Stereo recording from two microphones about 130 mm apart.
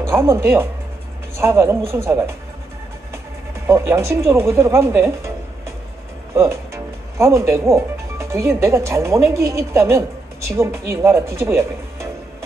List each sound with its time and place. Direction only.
0.1 s speech: 20° right (ahead or behind)
3.6 s speech: 20° right (ahead or behind)
6.3 s speech: 20° right (ahead or behind)